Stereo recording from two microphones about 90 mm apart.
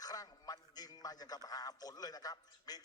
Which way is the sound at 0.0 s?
45° left (ahead or behind).